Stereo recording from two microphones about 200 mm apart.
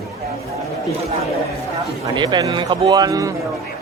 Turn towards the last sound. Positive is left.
turn(degrees=-15)  # may be behind; listen again after turning